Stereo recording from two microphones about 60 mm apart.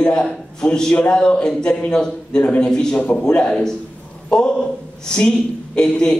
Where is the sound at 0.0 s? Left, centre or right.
Centre.